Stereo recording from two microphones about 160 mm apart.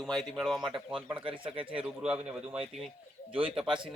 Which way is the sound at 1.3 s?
35° right (ahead or behind).